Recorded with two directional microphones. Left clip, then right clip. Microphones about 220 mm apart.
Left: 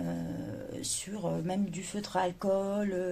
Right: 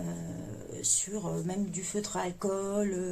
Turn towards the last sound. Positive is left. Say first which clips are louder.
# even
turn(degrees=20)  # may be behind; listen again after turning